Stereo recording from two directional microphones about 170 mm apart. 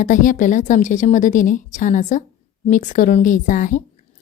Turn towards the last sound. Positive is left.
turn(degrees=50)  # may be behind; listen again after turning